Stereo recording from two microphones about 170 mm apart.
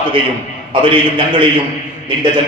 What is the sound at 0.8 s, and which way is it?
Speech, 30° right (ahead or behind).